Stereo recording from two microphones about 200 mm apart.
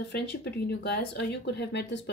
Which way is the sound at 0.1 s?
55° left (ahead or behind).